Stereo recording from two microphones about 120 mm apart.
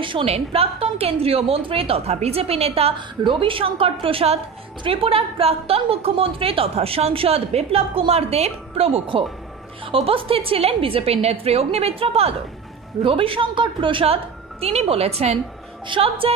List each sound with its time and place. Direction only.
0.0 s a woman's voice: 50° right (ahead or behind)